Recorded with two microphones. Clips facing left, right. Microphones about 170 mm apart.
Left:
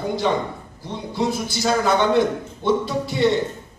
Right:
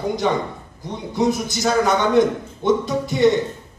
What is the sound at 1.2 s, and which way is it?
A man's voice, 20° right (ahead or behind).